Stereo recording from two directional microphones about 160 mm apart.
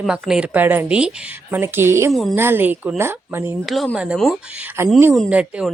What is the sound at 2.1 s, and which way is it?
Speech, centre (ahead or behind).